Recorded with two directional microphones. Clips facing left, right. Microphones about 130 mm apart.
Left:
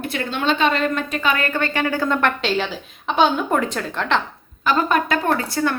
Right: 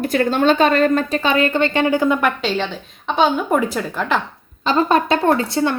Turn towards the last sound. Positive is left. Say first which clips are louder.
# right 4 dB
turn(degrees=-25)  # may be behind; listen again after turning